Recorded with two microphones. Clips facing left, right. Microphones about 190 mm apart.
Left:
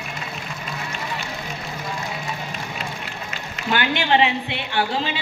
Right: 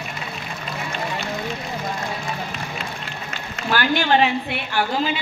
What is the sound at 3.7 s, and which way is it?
Speech, 20° left (ahead or behind).